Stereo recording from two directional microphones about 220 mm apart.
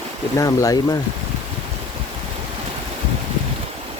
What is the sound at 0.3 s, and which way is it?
Speech, 15° left (ahead or behind).